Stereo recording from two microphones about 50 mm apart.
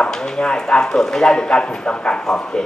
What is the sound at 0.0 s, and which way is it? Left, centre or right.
A man's voice, centre.